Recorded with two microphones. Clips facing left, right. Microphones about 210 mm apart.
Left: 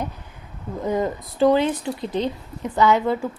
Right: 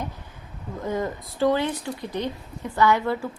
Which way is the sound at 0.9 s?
20° left (ahead or behind).